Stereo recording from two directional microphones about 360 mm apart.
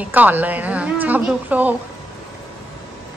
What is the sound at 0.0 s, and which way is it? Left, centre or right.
A woman's voice, centre.